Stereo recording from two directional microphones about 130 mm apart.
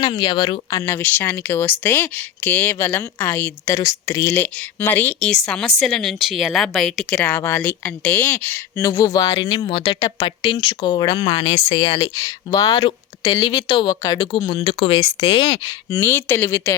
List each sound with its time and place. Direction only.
0.0 s speech: 35° left (ahead or behind)
0.8 s a woman's voice: 15° left (ahead or behind); by 7.2 s centre (ahead or behind)
7.3 s a woman's voice: 20° left (ahead or behind)